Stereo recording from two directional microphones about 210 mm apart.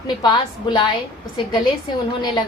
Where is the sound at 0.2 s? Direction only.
20° left (ahead or behind).